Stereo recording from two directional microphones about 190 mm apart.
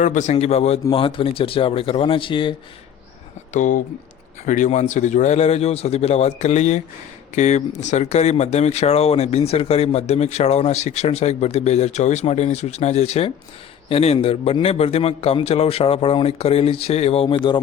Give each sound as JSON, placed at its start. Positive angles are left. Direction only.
{"t": 0.0, "sound": "speech", "side_deg": 40}
{"t": 3.5, "sound": "speech", "side_deg": 40}